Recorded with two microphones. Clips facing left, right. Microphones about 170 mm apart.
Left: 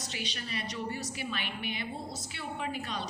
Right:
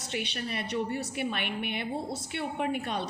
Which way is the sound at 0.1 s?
60° right (ahead or behind).